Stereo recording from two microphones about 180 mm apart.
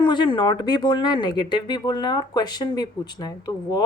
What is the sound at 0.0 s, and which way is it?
Speech, 25° left (ahead or behind).